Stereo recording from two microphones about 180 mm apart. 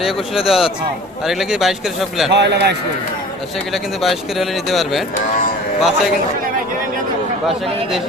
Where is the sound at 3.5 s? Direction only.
Centre (ahead or behind).